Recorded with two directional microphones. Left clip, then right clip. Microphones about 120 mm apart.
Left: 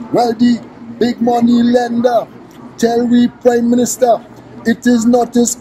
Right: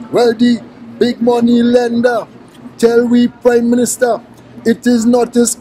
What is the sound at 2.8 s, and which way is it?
Speech, 15° right (ahead or behind).